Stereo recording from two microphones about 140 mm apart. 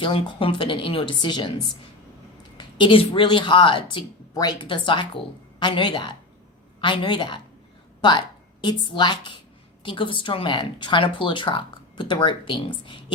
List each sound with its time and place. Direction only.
0.0 s a woman's voice: 35° left (ahead or behind)
8.6 s a woman's voice: 35° left (ahead or behind)